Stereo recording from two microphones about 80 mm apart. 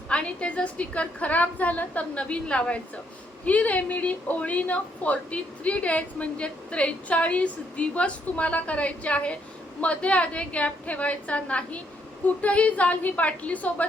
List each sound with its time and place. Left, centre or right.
0.1 s a woman's voice: centre